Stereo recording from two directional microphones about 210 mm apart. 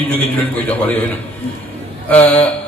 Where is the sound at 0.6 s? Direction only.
10° left (ahead or behind).